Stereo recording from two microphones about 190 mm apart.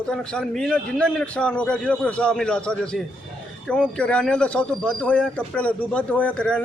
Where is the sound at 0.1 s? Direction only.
5° left (ahead or behind).